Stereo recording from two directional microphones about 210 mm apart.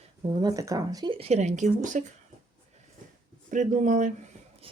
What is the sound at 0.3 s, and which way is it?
Speech, 20° right (ahead or behind).